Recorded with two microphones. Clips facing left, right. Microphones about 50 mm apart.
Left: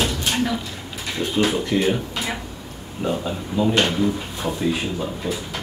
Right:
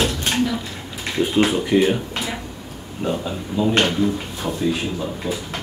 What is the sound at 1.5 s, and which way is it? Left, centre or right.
Speech, centre.